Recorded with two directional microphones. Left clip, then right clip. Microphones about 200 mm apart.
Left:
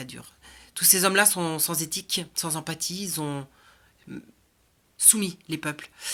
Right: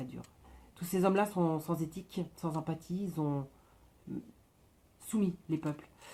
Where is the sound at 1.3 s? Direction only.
45° left (ahead or behind).